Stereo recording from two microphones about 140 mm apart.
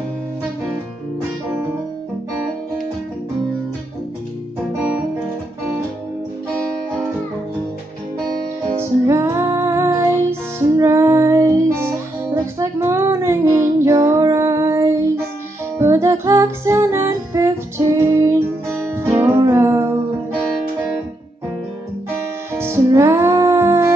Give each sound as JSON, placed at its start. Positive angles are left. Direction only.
{"t": 8.7, "sound": "music", "side_deg": -20}
{"t": 22.6, "sound": "music", "side_deg": -20}